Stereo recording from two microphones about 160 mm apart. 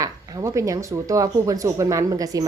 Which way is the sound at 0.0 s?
20° right (ahead or behind).